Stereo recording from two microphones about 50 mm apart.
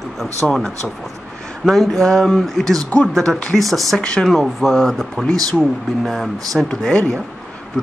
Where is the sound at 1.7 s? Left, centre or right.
Centre.